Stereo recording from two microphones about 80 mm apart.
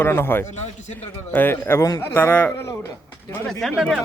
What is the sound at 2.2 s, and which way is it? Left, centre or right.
Speech, left.